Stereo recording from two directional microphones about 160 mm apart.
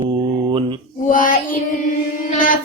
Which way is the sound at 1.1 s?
55° left (ahead or behind).